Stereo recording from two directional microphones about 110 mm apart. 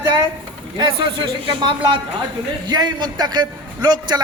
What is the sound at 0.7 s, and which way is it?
A man's voice, 45° right (ahead or behind).